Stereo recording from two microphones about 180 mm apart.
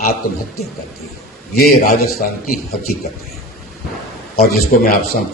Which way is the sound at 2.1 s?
55° left (ahead or behind).